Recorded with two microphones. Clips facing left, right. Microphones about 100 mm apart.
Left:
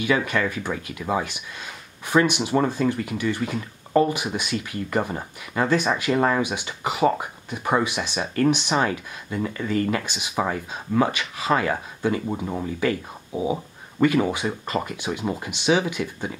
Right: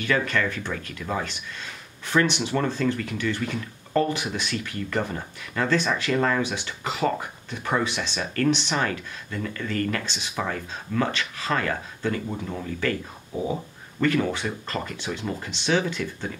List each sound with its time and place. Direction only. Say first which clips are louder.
0.0 s speech: left 2 dB; 10° left (ahead or behind)